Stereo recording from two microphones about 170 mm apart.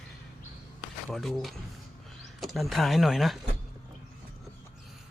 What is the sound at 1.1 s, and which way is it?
Speech, centre (ahead or behind).